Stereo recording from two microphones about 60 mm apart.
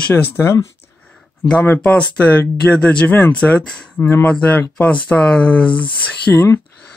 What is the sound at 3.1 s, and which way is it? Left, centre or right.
Speech, left.